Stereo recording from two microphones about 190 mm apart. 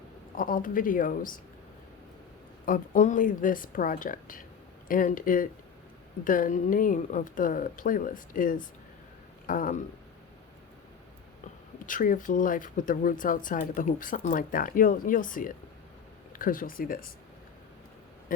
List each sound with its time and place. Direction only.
0.3 s speech: 45° left (ahead or behind)
2.6 s speech: 45° left (ahead or behind)
11.9 s speech: 45° left (ahead or behind)
18.3 s speech: 45° left (ahead or behind)